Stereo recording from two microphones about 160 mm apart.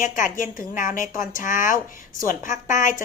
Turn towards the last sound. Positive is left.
turn(degrees=55)  # may be behind; listen again after turning